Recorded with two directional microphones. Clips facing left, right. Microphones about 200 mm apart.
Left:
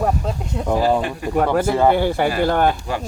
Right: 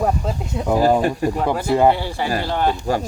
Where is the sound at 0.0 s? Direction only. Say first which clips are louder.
Even; centre (ahead or behind).